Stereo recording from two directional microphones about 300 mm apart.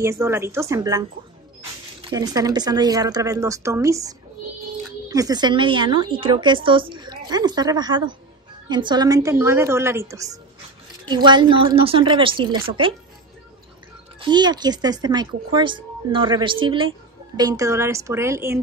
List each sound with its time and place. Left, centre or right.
0.0 s a woman's voice: centre
14.2 s a woman's voice: centre